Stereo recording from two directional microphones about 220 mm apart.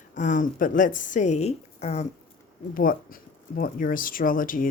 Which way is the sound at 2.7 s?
40° left (ahead or behind).